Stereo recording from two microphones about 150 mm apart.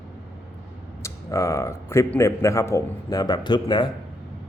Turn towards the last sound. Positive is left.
turn(degrees=30)  # may be behind; listen again after turning